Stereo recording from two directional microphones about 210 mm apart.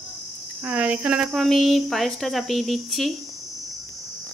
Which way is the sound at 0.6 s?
5° right (ahead or behind).